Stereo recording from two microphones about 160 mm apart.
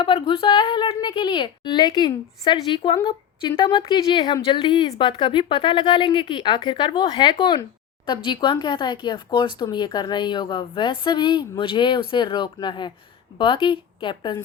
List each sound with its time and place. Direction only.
0.0 s speech: 30° left (ahead or behind)